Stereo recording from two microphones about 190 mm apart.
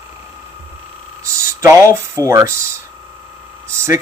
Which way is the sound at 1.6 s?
15° right (ahead or behind).